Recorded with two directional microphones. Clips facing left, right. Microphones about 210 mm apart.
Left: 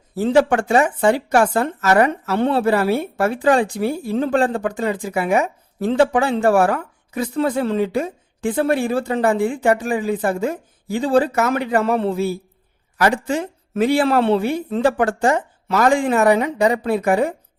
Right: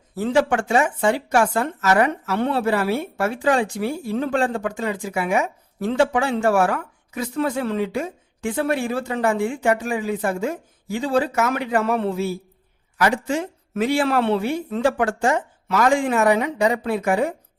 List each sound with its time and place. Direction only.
0.1 s speech: 30° left (ahead or behind)